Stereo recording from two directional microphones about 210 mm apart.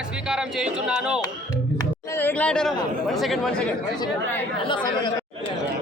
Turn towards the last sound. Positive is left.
turn(degrees=20)  # may be behind; listen again after turning